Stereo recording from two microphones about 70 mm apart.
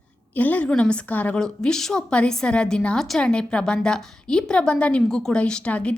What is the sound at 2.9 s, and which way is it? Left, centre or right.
Speech, centre.